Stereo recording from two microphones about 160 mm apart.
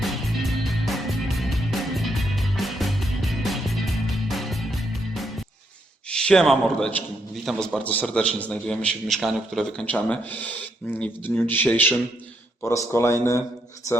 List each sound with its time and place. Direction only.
0.0 s music: centre (ahead or behind)
6.1 s a man's voice: 5° left (ahead or behind)